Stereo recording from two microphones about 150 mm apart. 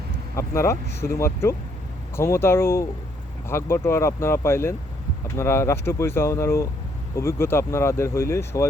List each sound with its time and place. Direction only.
0.3 s speech: 20° left (ahead or behind)